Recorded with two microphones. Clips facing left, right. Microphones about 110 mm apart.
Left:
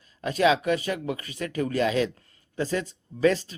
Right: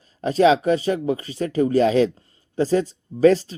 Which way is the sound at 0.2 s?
35° right (ahead or behind).